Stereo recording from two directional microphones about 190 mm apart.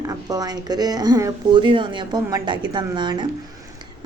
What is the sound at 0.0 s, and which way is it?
A woman's voice, 20° right (ahead or behind).